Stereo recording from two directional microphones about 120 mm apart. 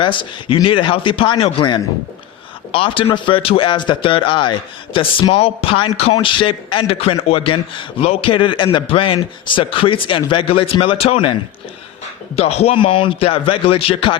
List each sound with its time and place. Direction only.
0.0 s a man's voice: 45° left (ahead or behind)
12.4 s a man's voice: 60° left (ahead or behind)